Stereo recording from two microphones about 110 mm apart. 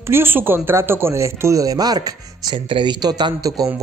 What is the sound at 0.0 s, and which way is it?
Chopping, 20° right (ahead or behind).